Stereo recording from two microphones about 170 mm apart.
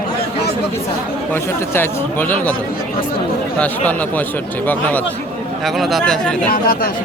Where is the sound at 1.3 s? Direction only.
15° left (ahead or behind).